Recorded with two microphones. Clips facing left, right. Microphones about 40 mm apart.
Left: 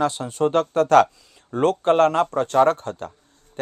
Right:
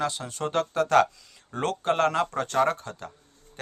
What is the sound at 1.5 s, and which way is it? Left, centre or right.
Speech, left.